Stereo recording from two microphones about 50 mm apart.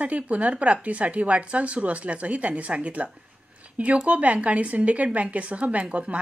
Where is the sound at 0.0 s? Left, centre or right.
Right.